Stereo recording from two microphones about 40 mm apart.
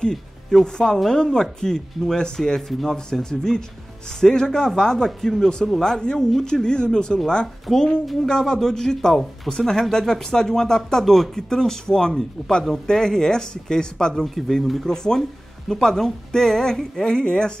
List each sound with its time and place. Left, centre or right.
0.1 s speech: centre
14.2 s speech: centre
14.9 s speech: centre